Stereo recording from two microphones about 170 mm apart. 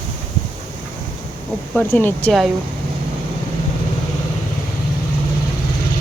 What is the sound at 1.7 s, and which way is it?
Speech, 10° left (ahead or behind).